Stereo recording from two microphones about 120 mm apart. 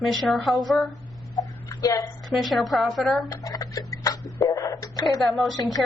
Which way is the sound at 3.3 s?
30° left (ahead or behind).